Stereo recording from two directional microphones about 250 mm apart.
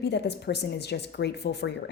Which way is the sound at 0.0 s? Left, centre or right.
Left.